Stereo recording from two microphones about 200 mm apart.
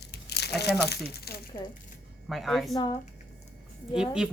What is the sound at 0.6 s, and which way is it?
Speech, 55° left (ahead or behind).